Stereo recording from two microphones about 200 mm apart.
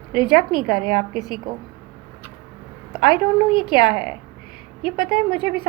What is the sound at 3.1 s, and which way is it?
Speech, 25° left (ahead or behind).